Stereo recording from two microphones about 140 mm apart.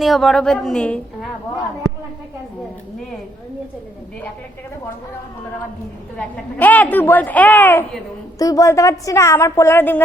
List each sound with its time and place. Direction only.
0.0 s a woman's voice: centre (ahead or behind)
6.1 s a woman's voice: 10° left (ahead or behind)